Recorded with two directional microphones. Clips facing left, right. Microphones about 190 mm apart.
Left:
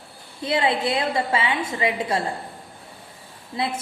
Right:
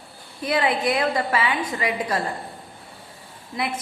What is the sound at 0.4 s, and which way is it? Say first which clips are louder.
A woman's voice: even; 25° left (ahead or behind).